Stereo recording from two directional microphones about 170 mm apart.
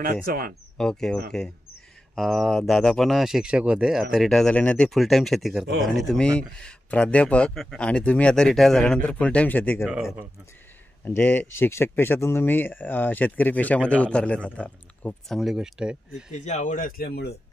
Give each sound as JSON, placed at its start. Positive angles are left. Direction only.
{"t": 0.0, "sound": "speech", "side_deg": -55}
{"t": 0.7, "sound": "speech", "side_deg": 5}
{"t": 11.1, "sound": "speech", "side_deg": 10}
{"t": 16.3, "sound": "speech", "side_deg": 45}